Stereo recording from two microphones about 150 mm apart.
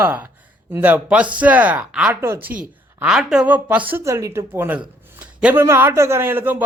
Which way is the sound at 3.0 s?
5° right (ahead or behind).